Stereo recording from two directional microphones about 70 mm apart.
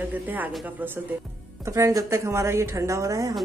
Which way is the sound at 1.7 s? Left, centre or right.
Right.